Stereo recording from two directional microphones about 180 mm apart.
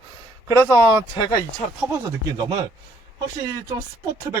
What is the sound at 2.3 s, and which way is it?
Speech, 25° right (ahead or behind).